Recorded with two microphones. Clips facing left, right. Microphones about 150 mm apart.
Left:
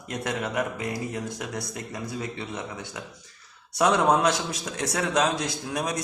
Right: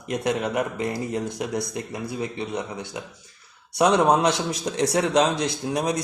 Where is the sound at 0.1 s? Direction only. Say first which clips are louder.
Right 5 dB; 20° right (ahead or behind).